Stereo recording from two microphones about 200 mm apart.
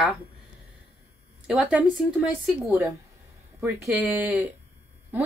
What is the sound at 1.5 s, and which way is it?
A woman's voice, 5° right (ahead or behind).